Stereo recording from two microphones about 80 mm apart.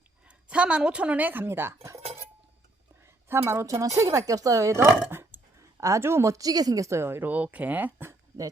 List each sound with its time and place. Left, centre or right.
0.3 s speech: centre; by 2.0 s right
3.2 s speech: right